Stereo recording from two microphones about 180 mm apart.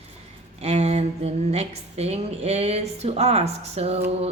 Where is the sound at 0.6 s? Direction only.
35° right (ahead or behind).